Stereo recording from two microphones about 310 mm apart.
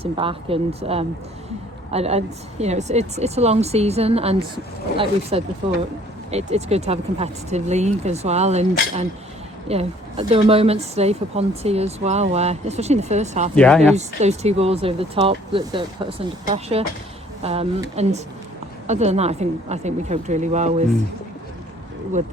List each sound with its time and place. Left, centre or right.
0.0 s speech: centre
13.6 s speech: centre
13.9 s speech: right